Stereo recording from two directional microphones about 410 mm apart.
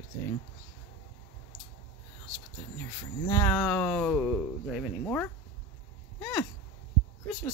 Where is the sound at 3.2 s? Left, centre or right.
Centre.